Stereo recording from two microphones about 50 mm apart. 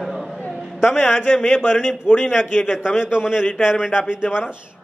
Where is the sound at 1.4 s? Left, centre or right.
Left.